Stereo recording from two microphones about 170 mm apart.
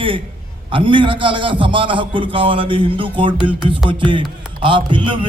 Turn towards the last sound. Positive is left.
turn(degrees=-30)  # may be behind; listen again after turning